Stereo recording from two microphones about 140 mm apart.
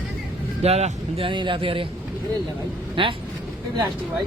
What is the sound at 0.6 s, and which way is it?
Speech, 50° right (ahead or behind).